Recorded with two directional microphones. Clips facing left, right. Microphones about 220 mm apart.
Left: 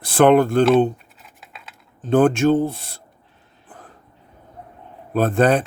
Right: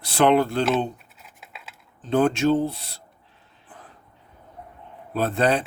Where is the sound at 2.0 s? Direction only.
50° left (ahead or behind).